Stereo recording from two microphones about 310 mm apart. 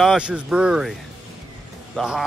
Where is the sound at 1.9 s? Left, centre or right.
Centre.